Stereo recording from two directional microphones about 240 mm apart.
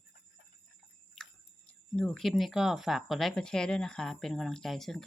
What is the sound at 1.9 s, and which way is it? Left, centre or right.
Speech, centre.